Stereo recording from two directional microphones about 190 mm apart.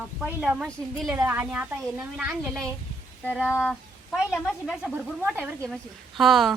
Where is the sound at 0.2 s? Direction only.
Centre (ahead or behind).